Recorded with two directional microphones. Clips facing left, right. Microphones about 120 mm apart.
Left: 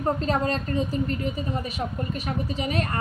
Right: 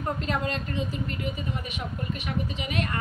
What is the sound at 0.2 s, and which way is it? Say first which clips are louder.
A woman's voice: left 4 dB; 35° left (ahead or behind).